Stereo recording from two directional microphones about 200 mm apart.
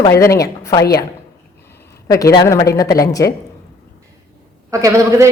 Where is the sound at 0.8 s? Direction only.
50° left (ahead or behind).